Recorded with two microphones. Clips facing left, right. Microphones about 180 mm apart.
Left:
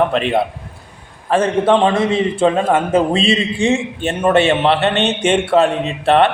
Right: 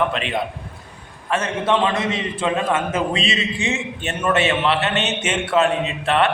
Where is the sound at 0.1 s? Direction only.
35° left (ahead or behind).